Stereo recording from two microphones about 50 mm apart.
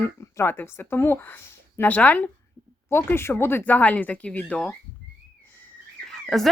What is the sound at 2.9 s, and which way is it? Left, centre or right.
Speech, left.